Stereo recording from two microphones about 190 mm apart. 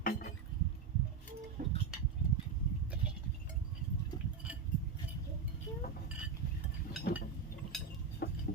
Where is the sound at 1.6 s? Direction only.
40° right (ahead or behind).